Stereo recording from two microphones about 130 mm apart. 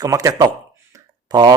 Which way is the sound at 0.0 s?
25° right (ahead or behind).